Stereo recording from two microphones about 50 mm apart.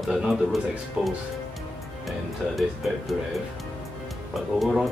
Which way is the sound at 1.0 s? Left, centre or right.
Right.